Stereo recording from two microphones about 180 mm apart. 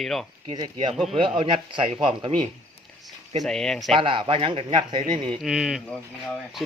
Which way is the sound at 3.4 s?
5° left (ahead or behind).